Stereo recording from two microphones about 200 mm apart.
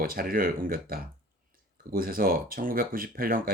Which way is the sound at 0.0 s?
45° right (ahead or behind).